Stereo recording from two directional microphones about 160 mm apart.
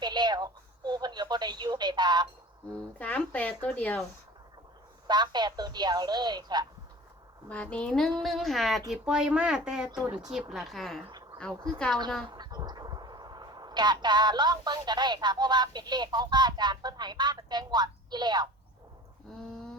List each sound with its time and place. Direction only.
0.0 s a sound: 25° right (ahead or behind)
3.0 s speech: 10° left (ahead or behind)
5.0 s a woman's voice: 25° right (ahead or behind)
7.5 s speech: 10° left (ahead or behind)
11.0 s a sound: 35° right (ahead or behind)
11.3 s speech: 5° left (ahead or behind)
12.3 s speech: 25° right (ahead or behind)